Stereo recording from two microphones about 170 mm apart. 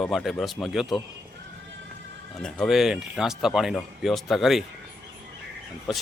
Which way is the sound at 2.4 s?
Centre (ahead or behind).